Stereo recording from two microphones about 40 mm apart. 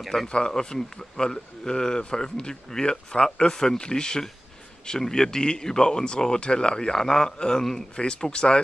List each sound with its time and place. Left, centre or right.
0.3 s speech: centre